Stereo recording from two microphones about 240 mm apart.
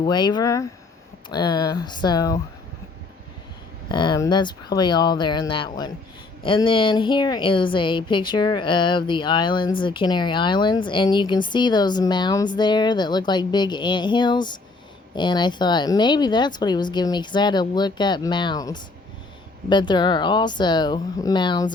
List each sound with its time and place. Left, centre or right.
0.0 s speech: centre
3.8 s a woman's voice: centre